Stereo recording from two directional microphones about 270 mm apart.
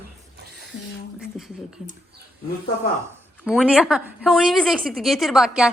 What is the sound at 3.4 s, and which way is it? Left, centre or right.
A woman's voice, centre.